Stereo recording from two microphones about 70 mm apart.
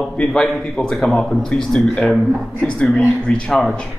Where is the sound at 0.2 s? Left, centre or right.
Centre.